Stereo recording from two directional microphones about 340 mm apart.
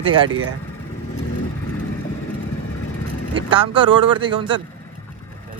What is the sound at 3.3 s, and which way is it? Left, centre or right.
Speech, centre.